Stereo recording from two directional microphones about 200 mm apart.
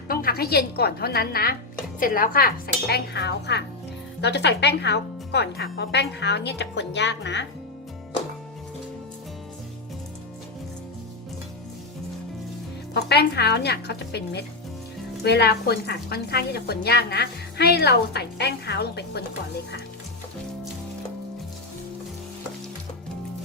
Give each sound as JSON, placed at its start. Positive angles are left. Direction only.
{"t": 0.1, "sound": "a woman's voice", "side_deg": 50}
{"t": 12.9, "sound": "a woman's voice", "side_deg": 55}